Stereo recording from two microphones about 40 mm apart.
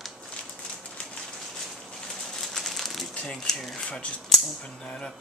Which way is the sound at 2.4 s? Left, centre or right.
Centre.